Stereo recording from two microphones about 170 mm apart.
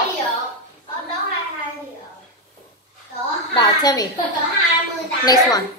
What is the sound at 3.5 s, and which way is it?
Speech, 25° left (ahead or behind).